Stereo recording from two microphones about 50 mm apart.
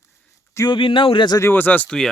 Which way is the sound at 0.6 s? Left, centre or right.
Left.